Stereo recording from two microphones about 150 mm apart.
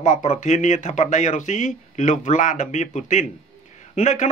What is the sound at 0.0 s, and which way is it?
Speech, 50° left (ahead or behind).